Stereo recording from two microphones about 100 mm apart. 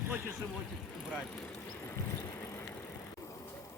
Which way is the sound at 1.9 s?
30° left (ahead or behind).